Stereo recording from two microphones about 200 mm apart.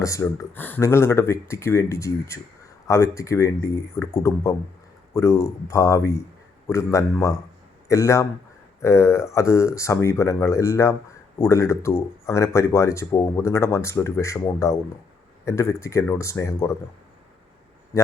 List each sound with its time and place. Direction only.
0.0 s speech: 15° left (ahead or behind)
17.9 s speech: 15° left (ahead or behind)